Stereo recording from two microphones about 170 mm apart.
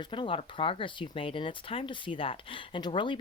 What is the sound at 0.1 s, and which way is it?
Speech, 30° left (ahead or behind).